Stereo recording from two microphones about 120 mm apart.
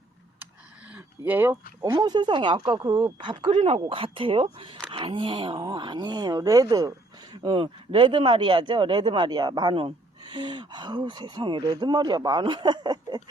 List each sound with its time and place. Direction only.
0.9 s a sound: 15° right (ahead or behind)
1.9 s speech: 35° right (ahead or behind)
7.4 s speech: 50° right (ahead or behind)